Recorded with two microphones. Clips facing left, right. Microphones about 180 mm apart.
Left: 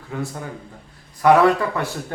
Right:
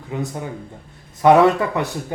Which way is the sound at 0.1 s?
20° right (ahead or behind).